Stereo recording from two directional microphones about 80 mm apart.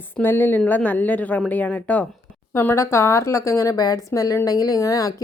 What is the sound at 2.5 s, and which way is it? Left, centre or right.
A woman's voice, left.